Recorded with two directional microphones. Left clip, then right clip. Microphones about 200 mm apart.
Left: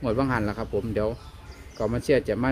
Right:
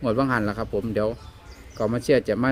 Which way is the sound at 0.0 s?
15° right (ahead or behind).